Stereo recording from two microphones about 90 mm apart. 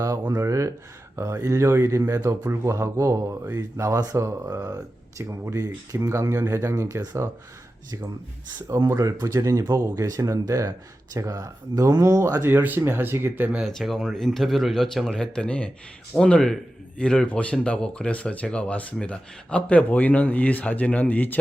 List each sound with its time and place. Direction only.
0.0 s speech: 35° right (ahead or behind)
8.9 s speech: 40° right (ahead or behind)
12.4 s speech: 25° right (ahead or behind)
13.7 s speech: 5° left (ahead or behind)